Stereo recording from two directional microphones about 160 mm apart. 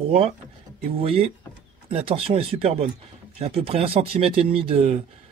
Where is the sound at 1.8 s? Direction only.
35° right (ahead or behind).